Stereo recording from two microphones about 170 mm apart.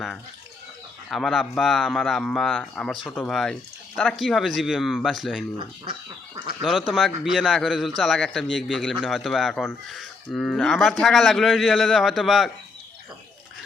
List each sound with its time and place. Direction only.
1.1 s a man's voice: centre (ahead or behind)
5.5 s speech: 30° right (ahead or behind)
6.6 s a man's voice: 5° right (ahead or behind)